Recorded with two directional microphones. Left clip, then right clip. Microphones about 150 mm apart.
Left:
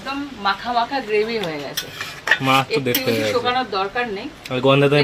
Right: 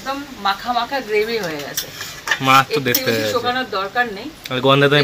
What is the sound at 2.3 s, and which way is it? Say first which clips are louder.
Speech: right 8 dB; 5° left (ahead or behind).